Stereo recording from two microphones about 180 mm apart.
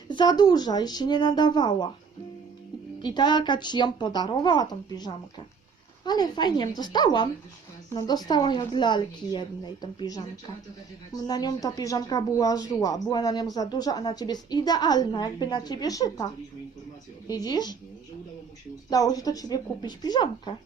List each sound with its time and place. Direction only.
0.1 s speech: 25° left (ahead or behind)
3.0 s speech: 25° left (ahead or behind)
11.3 s speech: 20° left (ahead or behind)
18.9 s speech: 20° left (ahead or behind)